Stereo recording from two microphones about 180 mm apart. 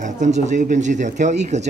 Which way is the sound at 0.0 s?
45° right (ahead or behind).